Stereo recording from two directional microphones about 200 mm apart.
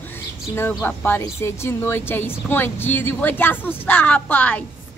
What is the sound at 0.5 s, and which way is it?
Speech, 10° left (ahead or behind).